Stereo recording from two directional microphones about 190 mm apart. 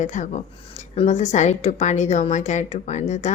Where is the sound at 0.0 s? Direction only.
40° left (ahead or behind).